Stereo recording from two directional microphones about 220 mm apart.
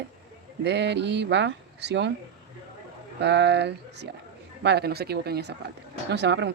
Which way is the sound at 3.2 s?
50° right (ahead or behind).